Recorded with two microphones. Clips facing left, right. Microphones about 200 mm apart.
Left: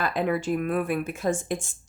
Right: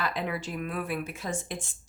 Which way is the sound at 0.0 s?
50° left (ahead or behind).